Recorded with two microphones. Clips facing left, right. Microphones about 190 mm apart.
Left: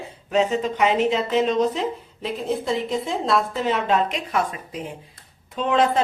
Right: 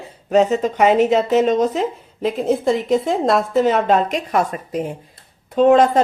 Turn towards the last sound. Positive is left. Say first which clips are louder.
# right 8 dB
turn(degrees=-45)  # may be behind; listen again after turning